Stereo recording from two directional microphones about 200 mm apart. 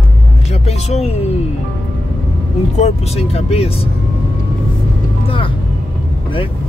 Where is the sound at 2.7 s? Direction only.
35° left (ahead or behind).